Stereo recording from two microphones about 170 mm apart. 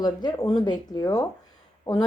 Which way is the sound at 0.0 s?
25° left (ahead or behind).